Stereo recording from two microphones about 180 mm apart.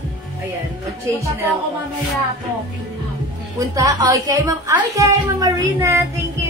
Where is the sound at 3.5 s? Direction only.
20° right (ahead or behind).